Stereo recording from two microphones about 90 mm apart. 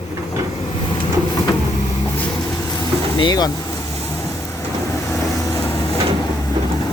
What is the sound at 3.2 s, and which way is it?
Speech, 50° left (ahead or behind).